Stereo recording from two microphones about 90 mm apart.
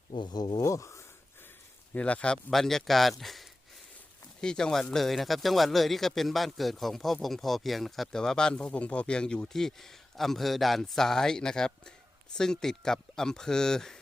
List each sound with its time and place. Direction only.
0.2 s speech: 55° left (ahead or behind)
0.6 s speech: 35° left (ahead or behind)
1.9 s speech: 15° left (ahead or behind)